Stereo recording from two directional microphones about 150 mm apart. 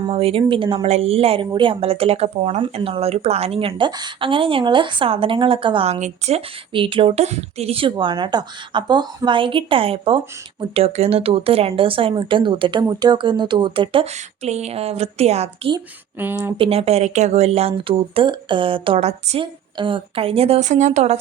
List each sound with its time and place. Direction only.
0.1 s speech: 40° right (ahead or behind)
16.1 s speech: 15° right (ahead or behind)
16.6 s speech: 40° right (ahead or behind)
19.7 s speech: 35° right (ahead or behind)